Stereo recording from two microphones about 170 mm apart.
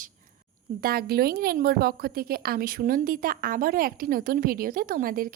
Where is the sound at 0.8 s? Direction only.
65° right (ahead or behind).